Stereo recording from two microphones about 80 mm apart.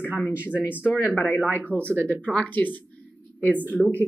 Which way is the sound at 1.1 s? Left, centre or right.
Left.